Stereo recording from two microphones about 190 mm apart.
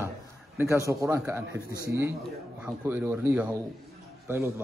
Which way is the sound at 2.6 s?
10° right (ahead or behind).